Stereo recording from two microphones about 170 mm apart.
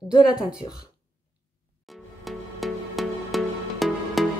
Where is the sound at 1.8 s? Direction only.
Centre (ahead or behind).